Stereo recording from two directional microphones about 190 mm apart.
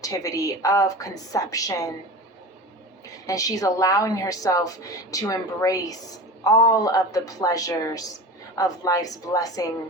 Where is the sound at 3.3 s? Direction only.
20° left (ahead or behind).